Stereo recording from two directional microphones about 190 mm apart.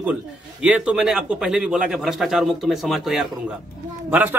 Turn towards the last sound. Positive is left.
turn(degrees=-10)  # may be behind; listen again after turning